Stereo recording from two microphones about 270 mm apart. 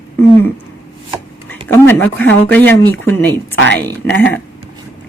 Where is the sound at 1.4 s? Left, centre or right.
Centre.